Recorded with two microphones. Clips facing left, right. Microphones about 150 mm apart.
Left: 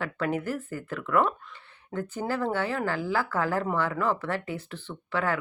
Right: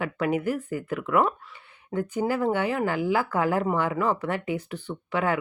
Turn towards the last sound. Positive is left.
turn(degrees=-15)  # may be behind; listen again after turning